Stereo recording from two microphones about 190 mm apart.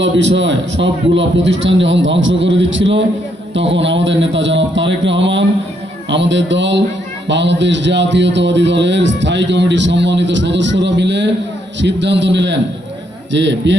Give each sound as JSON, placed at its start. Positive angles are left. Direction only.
{"t": 0.0, "sound": "a man's voice", "side_deg": -75}